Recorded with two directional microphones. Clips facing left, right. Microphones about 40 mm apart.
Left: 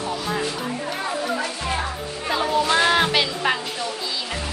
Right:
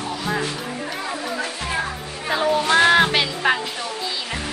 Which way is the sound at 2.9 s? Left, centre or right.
Centre.